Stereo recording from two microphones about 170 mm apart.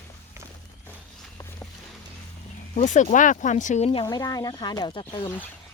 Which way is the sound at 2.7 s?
45° left (ahead or behind).